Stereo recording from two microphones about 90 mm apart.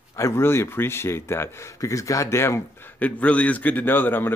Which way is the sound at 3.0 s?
15° left (ahead or behind).